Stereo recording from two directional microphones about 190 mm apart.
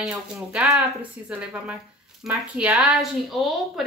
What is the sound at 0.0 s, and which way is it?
Speech, 5° right (ahead or behind).